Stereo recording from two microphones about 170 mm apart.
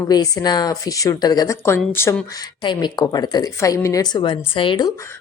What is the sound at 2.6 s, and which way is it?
Speech, 25° left (ahead or behind).